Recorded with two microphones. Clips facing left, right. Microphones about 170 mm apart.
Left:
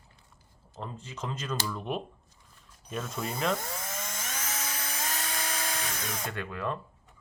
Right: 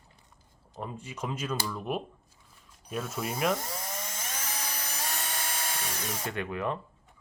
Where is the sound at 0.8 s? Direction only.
10° right (ahead or behind).